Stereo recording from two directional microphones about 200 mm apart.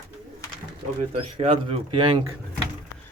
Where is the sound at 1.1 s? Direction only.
30° right (ahead or behind).